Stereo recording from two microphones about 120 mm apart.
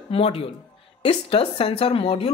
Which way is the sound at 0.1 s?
50° left (ahead or behind).